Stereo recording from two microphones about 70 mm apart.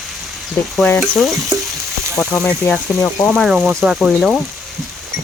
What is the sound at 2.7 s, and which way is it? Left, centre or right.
Speech, left.